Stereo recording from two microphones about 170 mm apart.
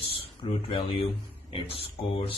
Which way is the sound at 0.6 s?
30° left (ahead or behind).